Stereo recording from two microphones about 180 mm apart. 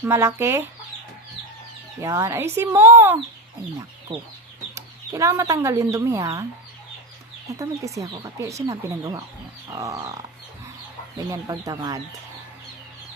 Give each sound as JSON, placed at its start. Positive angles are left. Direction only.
{"t": 0.0, "sound": "speech", "side_deg": -15}
{"t": 2.0, "sound": "speech", "side_deg": -15}
{"t": 4.7, "sound": "speech", "side_deg": -15}
{"t": 7.5, "sound": "speech", "side_deg": -15}
{"t": 11.3, "sound": "speech", "side_deg": -20}